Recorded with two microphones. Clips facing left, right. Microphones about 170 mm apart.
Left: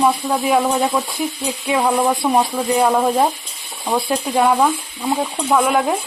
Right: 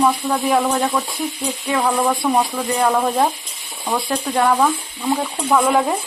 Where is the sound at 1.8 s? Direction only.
15° left (ahead or behind).